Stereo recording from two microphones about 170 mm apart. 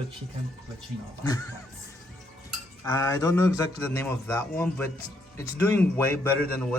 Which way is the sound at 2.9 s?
20° left (ahead or behind).